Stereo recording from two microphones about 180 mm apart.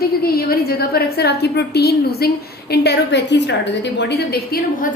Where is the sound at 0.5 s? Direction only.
60° left (ahead or behind).